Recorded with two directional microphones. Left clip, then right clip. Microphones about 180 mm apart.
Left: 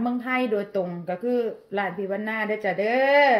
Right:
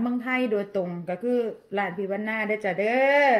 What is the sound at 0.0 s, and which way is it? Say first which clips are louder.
A woman's voice: left 1 dB; 20° right (ahead or behind).